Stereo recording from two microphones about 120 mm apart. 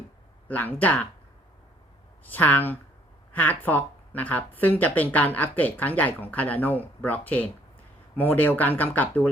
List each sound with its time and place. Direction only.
0.4 s speech: 15° left (ahead or behind)
2.2 s speech: 15° left (ahead or behind)